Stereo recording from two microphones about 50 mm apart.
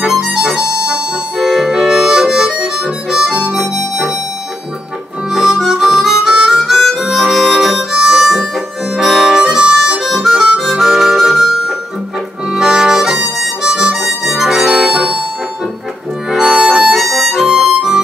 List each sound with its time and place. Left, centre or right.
0.0 s harmonica: centre
1.4 s harmonica: centre
5.3 s harmonica: centre
14.7 s harmonica: right
16.3 s harmonica: centre
16.9 s harmonica: centre